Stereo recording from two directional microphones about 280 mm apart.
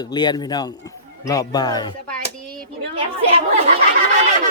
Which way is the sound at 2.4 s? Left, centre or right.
Centre.